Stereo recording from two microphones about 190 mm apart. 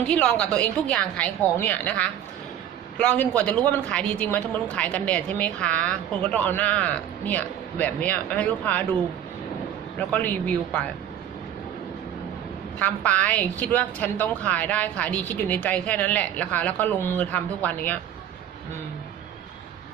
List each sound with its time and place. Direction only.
0.1 s a woman's voice: 5° left (ahead or behind)
10.1 s speech: 10° left (ahead or behind)
12.8 s speech: 5° left (ahead or behind)